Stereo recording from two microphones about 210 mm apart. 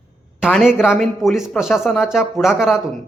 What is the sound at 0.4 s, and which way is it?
Speech, centre (ahead or behind).